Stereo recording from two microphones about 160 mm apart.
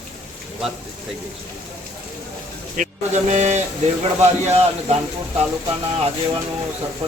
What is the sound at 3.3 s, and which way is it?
A man's voice, 45° right (ahead or behind).